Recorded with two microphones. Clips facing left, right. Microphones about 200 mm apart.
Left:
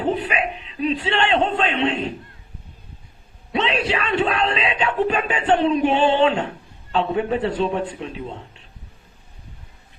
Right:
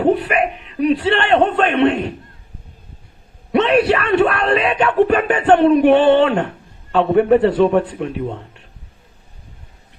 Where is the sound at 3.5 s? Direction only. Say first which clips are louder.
Right 8 dB; 60° right (ahead or behind).